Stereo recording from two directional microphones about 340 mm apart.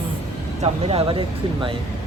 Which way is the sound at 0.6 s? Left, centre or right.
Centre.